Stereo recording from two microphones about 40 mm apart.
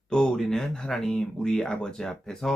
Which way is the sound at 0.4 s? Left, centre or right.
Centre.